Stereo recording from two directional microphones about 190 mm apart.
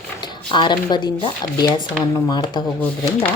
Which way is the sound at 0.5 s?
25° left (ahead or behind).